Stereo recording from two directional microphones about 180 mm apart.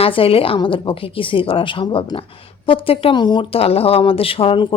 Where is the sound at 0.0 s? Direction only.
30° left (ahead or behind).